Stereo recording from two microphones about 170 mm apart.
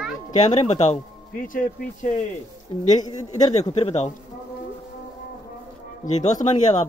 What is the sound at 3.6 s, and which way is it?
Speech, 40° left (ahead or behind).